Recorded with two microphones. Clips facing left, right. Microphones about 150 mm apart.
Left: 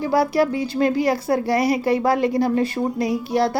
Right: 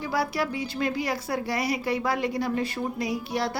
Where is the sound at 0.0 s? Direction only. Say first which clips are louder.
Left 9 dB; 40° left (ahead or behind).